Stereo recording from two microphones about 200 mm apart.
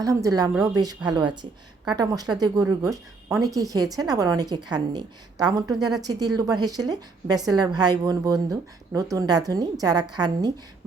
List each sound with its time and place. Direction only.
0.0 s a woman's voice: 15° right (ahead or behind)